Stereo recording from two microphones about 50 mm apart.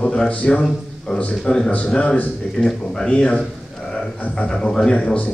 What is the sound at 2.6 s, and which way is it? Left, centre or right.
Speech, centre.